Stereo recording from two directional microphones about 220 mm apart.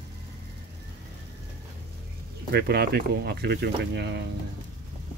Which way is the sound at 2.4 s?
45° right (ahead or behind).